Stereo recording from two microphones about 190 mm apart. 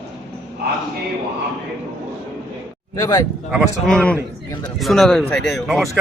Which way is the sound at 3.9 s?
5° left (ahead or behind).